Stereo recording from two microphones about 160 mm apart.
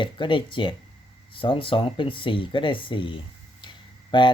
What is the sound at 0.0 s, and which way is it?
Speech, 30° left (ahead or behind).